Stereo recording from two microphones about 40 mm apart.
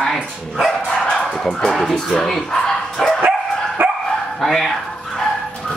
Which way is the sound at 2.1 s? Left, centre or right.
Centre.